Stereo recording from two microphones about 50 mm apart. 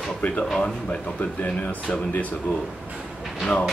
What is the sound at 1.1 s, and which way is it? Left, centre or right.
Speech, left.